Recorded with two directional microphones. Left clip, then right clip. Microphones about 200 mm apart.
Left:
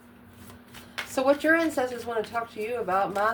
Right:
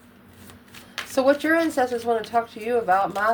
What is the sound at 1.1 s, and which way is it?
Speech, 30° right (ahead or behind).